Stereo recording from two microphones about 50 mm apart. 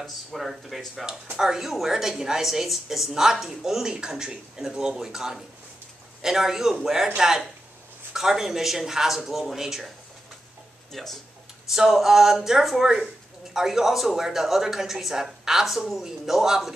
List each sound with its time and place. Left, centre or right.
0.0 s speech: centre
10.9 s speech: centre
11.6 s speech: centre